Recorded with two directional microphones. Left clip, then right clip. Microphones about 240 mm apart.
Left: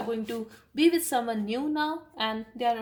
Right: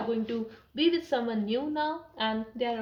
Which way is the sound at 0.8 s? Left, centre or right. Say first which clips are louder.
Left 3 dB; left.